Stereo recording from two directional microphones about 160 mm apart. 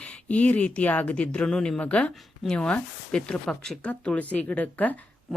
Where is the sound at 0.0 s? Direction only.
10° left (ahead or behind).